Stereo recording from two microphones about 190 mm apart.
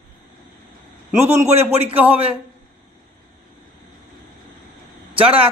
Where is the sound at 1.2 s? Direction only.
15° right (ahead or behind).